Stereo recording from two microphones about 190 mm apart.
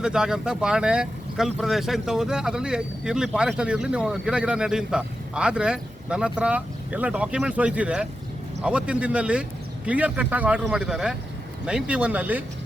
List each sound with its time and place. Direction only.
0.0 s speech: 5° right (ahead or behind)